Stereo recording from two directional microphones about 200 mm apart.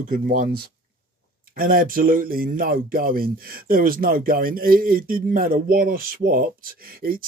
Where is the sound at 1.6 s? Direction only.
45° right (ahead or behind).